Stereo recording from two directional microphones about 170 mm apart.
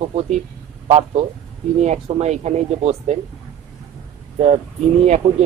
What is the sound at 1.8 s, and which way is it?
Speech, 40° right (ahead or behind).